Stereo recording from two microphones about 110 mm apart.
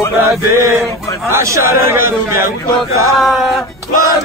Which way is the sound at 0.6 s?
25° right (ahead or behind).